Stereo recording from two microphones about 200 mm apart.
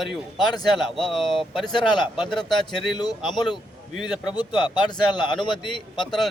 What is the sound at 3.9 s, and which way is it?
Speech, centre (ahead or behind).